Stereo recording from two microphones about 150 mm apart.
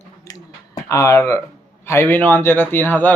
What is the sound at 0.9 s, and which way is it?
Speech, 20° left (ahead or behind).